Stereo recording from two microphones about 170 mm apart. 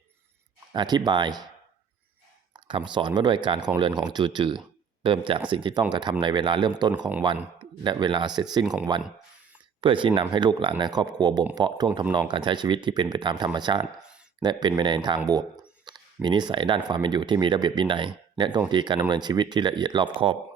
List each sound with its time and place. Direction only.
0.7 s speech: 25° right (ahead or behind)
2.5 s speech: 30° right (ahead or behind)
8.6 s speech: 5° right (ahead or behind)
9.8 s speech: 30° right (ahead or behind)